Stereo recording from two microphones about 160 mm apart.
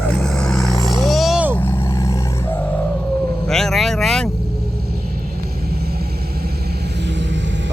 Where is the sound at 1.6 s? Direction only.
15° left (ahead or behind).